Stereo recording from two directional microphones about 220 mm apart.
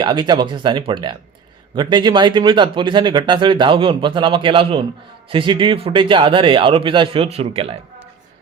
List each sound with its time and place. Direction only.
0.0 s speech: 20° right (ahead or behind)